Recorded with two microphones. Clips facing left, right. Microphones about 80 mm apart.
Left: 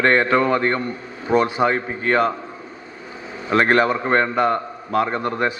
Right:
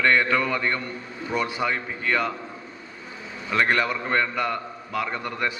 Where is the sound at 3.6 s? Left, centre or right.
Left.